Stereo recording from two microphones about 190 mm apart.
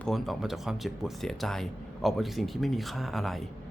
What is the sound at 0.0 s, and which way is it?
Speech, centre (ahead or behind).